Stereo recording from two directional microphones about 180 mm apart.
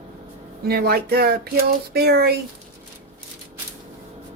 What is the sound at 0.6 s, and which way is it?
Speech, 60° right (ahead or behind).